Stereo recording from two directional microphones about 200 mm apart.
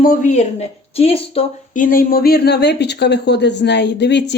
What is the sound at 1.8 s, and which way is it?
Speech, 45° left (ahead or behind).